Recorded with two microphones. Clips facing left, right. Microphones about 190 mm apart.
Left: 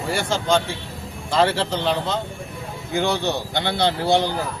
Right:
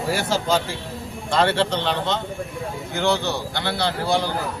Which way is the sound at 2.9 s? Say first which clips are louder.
Left 1 dB; 15° left (ahead or behind).